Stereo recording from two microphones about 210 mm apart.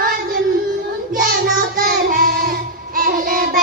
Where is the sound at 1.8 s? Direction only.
45° right (ahead or behind).